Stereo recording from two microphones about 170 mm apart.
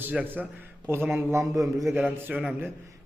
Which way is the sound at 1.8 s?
5° right (ahead or behind).